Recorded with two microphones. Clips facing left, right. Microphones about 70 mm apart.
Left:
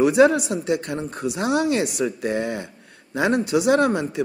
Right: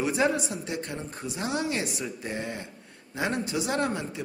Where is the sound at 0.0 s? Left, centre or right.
Left.